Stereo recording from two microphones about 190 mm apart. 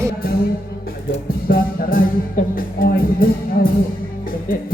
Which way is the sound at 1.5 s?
50° left (ahead or behind).